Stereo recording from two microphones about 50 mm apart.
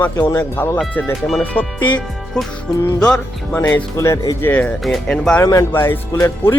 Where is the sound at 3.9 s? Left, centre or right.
Left.